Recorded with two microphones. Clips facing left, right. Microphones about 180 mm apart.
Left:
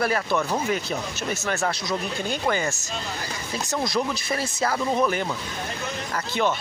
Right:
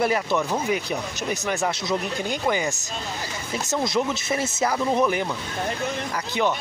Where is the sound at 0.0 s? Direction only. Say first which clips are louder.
Right 1 dB; 20° right (ahead or behind).